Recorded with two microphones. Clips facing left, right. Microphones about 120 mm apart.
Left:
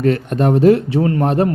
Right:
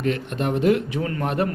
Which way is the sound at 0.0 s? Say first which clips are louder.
Left 8 dB; 40° left (ahead or behind).